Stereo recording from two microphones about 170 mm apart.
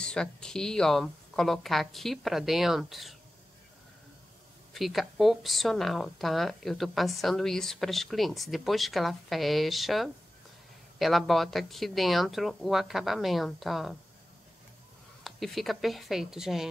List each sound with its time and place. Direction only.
0.0 s speech: 5° left (ahead or behind)
4.7 s speech: centre (ahead or behind)
15.2 s speech: centre (ahead or behind)